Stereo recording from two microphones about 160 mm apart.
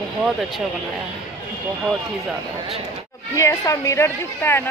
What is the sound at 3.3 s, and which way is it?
A woman's voice, 20° left (ahead or behind).